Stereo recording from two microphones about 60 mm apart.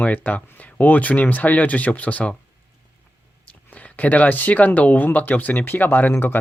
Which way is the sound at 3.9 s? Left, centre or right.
Left.